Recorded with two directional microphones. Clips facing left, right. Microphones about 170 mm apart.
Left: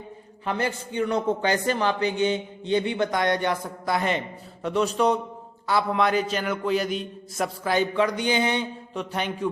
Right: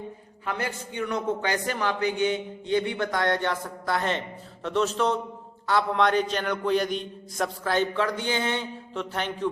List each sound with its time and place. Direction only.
0.4 s a man's voice: 30° left (ahead or behind); by 9.5 s 15° left (ahead or behind)